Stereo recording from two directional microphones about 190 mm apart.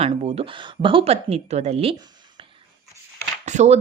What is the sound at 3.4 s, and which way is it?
Speech, 40° right (ahead or behind).